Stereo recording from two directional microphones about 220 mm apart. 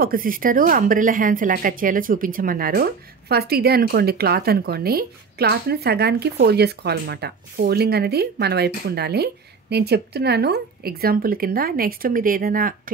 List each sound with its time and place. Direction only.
0.0 s speech: 40° right (ahead or behind)